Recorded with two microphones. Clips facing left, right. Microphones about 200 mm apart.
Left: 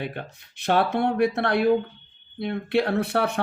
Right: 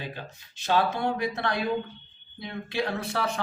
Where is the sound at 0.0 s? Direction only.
60° left (ahead or behind).